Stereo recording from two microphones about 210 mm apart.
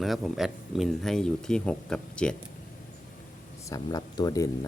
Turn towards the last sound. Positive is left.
turn(degrees=15)  # may be behind; listen again after turning